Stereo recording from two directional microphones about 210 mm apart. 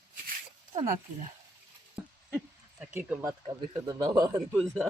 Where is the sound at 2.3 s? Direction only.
Centre (ahead or behind).